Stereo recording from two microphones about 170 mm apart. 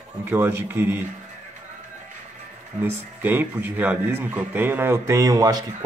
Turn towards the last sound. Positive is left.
turn(degrees=-20)  # may be behind; listen again after turning